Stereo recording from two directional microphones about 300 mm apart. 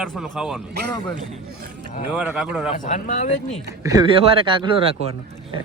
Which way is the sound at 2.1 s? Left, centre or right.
Centre.